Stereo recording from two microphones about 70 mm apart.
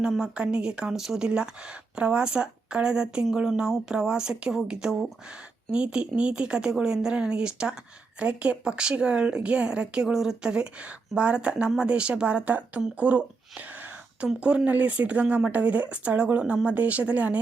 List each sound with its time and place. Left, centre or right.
0.0 s speech: centre
13.0 s a sound: centre
14.3 s speech: centre